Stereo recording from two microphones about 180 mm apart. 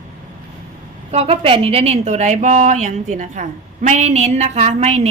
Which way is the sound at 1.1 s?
35° right (ahead or behind).